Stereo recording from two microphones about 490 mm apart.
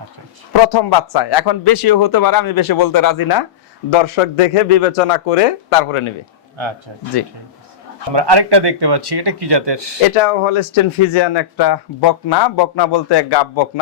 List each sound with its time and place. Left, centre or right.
0.5 s a man's voice: left
3.8 s a man's voice: left
8.1 s speech: right
10.2 s a man's voice: left
11.1 s a man's voice: left